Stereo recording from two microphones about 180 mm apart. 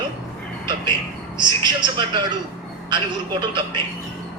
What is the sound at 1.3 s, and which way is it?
Speech, 25° right (ahead or behind).